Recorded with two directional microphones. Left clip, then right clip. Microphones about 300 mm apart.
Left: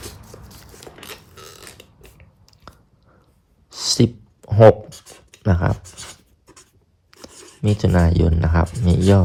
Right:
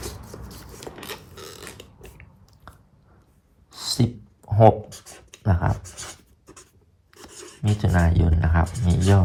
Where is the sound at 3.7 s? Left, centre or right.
Left.